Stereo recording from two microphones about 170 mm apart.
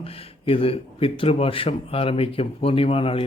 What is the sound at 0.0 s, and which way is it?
A man's voice, 35° left (ahead or behind).